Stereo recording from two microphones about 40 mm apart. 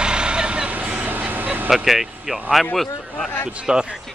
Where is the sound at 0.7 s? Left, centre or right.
Right.